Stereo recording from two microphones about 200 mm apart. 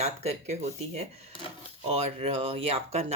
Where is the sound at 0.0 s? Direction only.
30° right (ahead or behind).